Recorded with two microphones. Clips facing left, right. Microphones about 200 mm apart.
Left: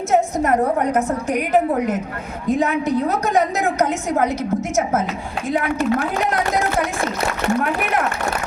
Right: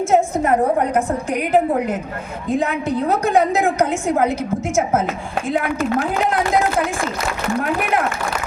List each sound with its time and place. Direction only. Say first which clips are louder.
2.5 s a woman's voice: left 1 dB; 30° right (ahead or behind)